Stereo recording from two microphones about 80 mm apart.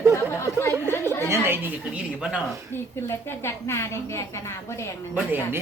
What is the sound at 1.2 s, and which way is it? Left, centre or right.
Speech, right.